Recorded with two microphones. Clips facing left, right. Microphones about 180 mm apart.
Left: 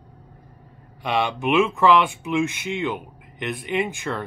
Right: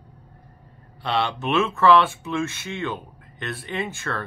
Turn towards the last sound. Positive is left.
turn(degrees=15)  # may be behind; listen again after turning